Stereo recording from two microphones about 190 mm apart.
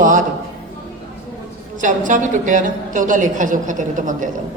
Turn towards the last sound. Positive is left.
turn(degrees=-45)  # may be behind; listen again after turning